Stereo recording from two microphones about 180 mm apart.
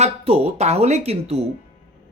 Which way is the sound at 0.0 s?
35° right (ahead or behind).